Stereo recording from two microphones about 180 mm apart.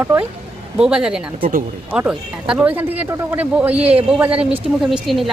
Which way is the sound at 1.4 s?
50° right (ahead or behind).